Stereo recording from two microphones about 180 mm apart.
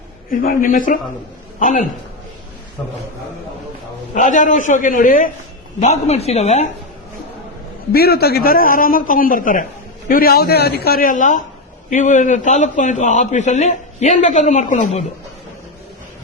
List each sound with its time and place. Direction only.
0.3 s a man's voice: 50° left (ahead or behind)
4.1 s a man's voice: 45° left (ahead or behind)
5.8 s a man's voice: 35° left (ahead or behind)
7.9 s a man's voice: 60° left (ahead or behind); by 15.0 s 45° left (ahead or behind)